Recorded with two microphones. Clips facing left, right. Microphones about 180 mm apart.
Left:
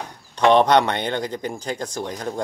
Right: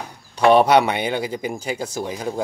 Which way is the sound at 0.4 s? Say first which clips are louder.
Right 1 dB; 10° right (ahead or behind).